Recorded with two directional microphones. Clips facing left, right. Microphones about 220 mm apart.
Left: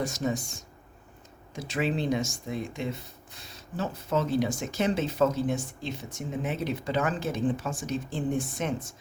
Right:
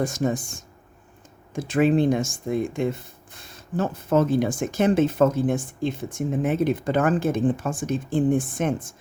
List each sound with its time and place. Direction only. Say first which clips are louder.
0.0 s speech: right 5 dB; 50° right (ahead or behind)